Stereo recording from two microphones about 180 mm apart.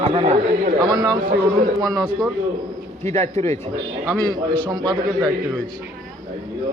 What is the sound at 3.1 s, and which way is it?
Speech, 35° right (ahead or behind).